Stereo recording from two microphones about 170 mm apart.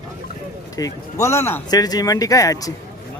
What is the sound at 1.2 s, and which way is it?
A man's voice, 15° left (ahead or behind).